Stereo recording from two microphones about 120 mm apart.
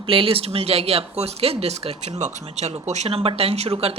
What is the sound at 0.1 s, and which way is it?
Speech, 50° right (ahead or behind).